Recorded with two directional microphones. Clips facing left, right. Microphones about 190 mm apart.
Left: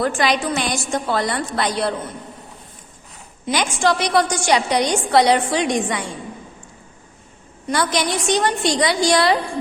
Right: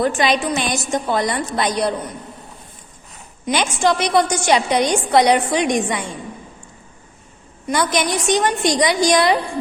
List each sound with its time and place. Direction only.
0.0 s a woman's voice: 20° right (ahead or behind)
3.4 s a woman's voice: 20° right (ahead or behind)
7.7 s a woman's voice: 20° right (ahead or behind)